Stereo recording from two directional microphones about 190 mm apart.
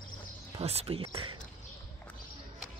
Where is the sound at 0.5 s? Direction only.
30° right (ahead or behind).